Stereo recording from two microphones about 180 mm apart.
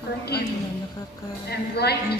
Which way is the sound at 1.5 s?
65° left (ahead or behind).